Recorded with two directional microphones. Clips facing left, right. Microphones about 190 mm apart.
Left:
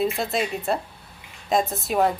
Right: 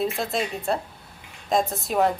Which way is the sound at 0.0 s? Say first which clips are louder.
Left 2 dB; centre (ahead or behind).